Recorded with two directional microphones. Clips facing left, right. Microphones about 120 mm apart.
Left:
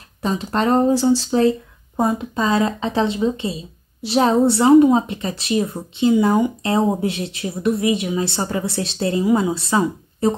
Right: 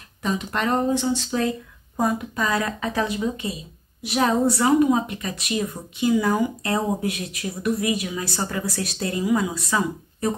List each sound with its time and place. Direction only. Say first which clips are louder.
0.2 s speech: left 5 dB; 30° left (ahead or behind)